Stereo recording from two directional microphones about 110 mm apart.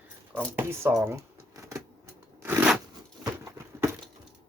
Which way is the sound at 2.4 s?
15° right (ahead or behind).